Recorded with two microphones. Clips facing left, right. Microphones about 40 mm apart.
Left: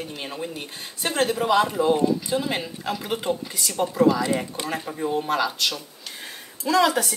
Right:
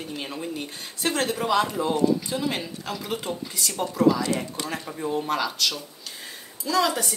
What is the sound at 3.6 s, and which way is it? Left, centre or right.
Speech, centre.